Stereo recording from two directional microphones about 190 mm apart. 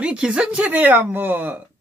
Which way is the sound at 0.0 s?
5° right (ahead or behind).